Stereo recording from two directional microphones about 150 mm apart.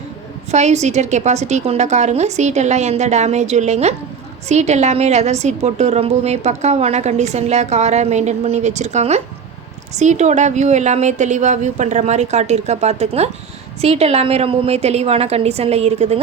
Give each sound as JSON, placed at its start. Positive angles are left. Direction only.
{"t": 0.5, "sound": "a woman's voice", "side_deg": -50}